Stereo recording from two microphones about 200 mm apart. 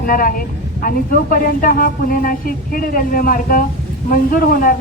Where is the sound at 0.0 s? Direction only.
45° left (ahead or behind).